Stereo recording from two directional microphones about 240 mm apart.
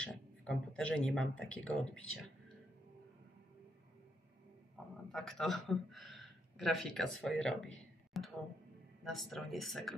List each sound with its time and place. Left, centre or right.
0.0 s a man's voice: centre
5.1 s a man's voice: centre